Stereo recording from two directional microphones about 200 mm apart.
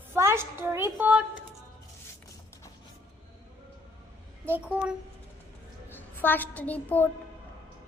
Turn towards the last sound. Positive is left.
turn(degrees=10)  # may be behind; listen again after turning